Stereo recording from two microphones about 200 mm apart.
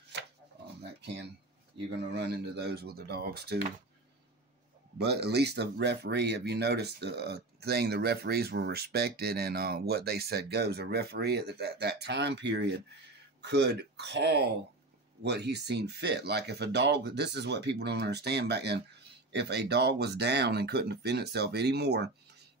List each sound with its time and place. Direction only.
0.1 s rub: 60° right (ahead or behind)
0.8 s a sound: 55° right (ahead or behind)
1.9 s speech: 55° right (ahead or behind)
4.9 s speech: 55° right (ahead or behind)